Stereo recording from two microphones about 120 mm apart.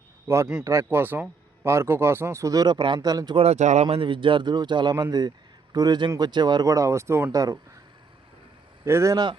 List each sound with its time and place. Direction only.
0.3 s speech: 20° right (ahead or behind)
3.3 s speech: 65° right (ahead or behind)
3.8 s a man's voice: 45° right (ahead or behind); by 7.6 s 30° right (ahead or behind)
8.8 s speech: 25° right (ahead or behind)
9.1 s a man's voice: 40° right (ahead or behind)